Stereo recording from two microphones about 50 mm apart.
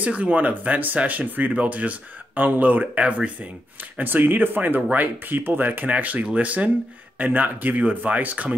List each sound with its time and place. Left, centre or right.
0.0 s speech: right